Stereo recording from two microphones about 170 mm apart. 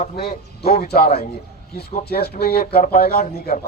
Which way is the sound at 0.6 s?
65° left (ahead or behind).